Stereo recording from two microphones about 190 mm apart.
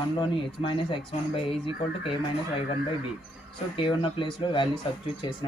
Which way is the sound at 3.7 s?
25° left (ahead or behind).